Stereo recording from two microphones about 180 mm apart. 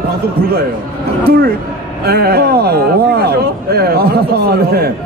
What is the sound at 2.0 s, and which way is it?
Speech, 60° right (ahead or behind).